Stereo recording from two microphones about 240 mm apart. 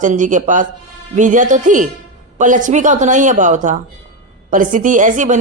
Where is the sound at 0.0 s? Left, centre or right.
Right.